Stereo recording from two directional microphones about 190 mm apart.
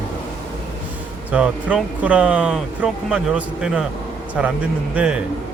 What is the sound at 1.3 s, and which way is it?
Speech, 5° right (ahead or behind).